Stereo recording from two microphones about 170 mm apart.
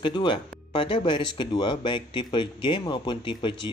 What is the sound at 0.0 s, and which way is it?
Speech, 30° left (ahead or behind).